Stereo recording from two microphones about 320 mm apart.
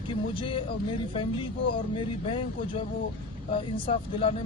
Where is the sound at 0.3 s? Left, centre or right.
Centre.